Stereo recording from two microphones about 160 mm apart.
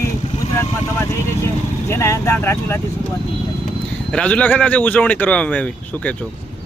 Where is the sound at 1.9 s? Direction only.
15° left (ahead or behind).